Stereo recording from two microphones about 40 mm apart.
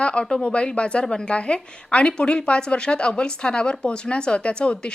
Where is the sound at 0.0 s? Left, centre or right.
Left.